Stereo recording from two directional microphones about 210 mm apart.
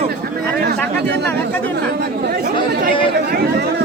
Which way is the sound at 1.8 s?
50° right (ahead or behind).